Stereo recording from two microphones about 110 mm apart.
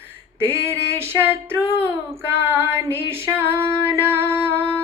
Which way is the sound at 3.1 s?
20° right (ahead or behind).